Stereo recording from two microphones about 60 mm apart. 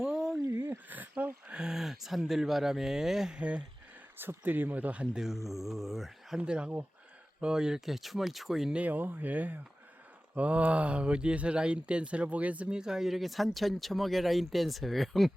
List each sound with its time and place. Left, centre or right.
0.0 s a sound: centre
0.4 s a sound: right
1.5 s speech: centre
3.3 s speech: right
4.2 s speech: right
5.1 s speech: centre
6.4 s speech: centre
8.7 s speech: right
12.8 s speech: centre